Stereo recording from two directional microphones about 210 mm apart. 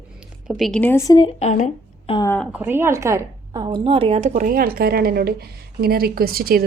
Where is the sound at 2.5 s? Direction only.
10° right (ahead or behind).